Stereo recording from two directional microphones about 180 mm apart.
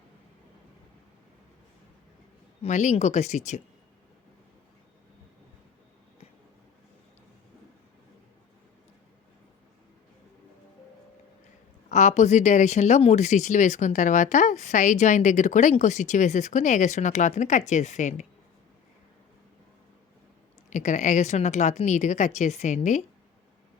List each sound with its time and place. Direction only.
2.6 s speech: 40° left (ahead or behind)
11.9 s speech: 40° left (ahead or behind)
20.7 s speech: 40° left (ahead or behind)